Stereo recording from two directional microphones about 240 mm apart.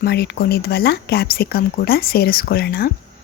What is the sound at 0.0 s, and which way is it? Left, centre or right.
Speech, left.